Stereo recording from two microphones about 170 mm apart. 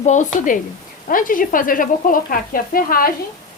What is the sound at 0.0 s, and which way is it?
Speech, 45° left (ahead or behind).